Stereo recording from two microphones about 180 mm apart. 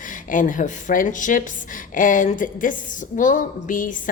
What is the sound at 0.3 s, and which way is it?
A woman's voice, 45° left (ahead or behind).